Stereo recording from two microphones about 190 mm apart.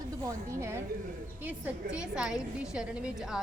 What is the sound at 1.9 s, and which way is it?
A woman's voice, 5° right (ahead or behind).